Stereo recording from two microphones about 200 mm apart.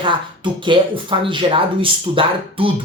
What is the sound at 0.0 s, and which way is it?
Speech, 25° right (ahead or behind).